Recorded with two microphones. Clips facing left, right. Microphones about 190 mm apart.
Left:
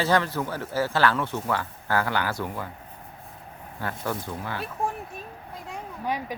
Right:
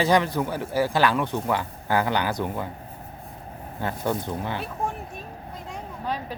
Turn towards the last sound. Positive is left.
turn(degrees=15)  # may be behind; listen again after turning